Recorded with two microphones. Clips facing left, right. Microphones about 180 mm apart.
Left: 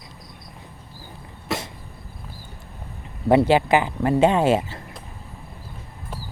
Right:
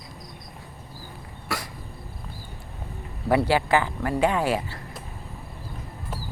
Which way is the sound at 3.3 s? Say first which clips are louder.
Left 5 dB; 20° left (ahead or behind).